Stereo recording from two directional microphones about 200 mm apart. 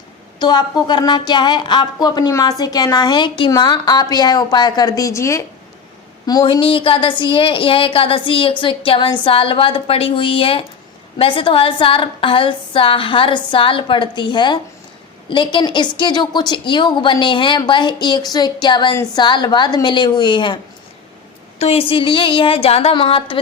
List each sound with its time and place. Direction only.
0.3 s a woman's voice: 20° left (ahead or behind)
21.6 s a woman's voice: 30° left (ahead or behind)